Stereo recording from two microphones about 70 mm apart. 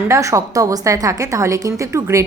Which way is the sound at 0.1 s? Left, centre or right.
Right.